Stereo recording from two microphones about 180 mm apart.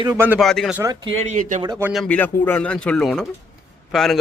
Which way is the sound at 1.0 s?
35° right (ahead or behind).